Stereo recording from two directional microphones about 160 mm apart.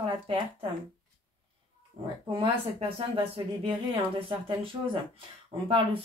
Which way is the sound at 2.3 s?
35° right (ahead or behind).